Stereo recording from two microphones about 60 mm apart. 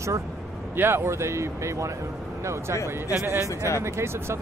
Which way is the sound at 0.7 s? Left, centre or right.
Right.